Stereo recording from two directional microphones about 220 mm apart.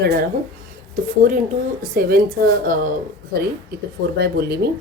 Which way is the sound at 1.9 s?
45° right (ahead or behind).